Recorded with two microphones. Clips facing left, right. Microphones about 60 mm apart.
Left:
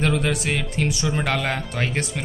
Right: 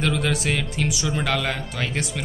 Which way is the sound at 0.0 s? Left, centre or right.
Left.